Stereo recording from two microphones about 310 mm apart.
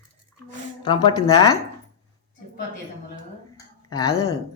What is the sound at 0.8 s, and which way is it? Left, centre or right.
Speech, centre.